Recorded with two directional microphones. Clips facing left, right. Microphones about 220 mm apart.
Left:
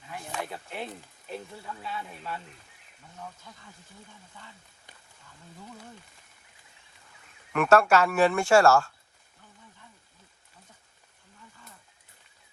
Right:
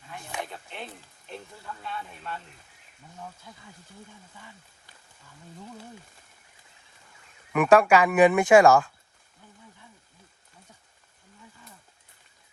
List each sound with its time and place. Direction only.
0.5 s speech: 5° left (ahead or behind)
3.5 s speech: centre (ahead or behind)
7.5 s speech: 15° right (ahead or behind)